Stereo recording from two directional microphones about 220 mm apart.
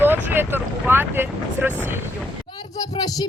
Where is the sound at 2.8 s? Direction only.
15° left (ahead or behind).